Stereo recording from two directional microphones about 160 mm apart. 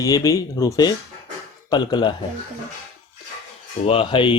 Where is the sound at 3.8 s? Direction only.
35° left (ahead or behind).